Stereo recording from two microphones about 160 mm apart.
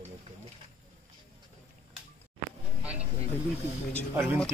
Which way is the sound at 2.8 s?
10° right (ahead or behind).